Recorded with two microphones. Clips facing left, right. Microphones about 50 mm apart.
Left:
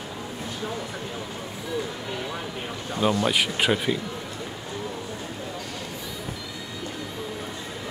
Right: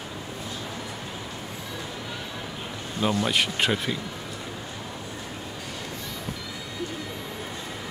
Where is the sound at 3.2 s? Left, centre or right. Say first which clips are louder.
Left 1 dB; centre.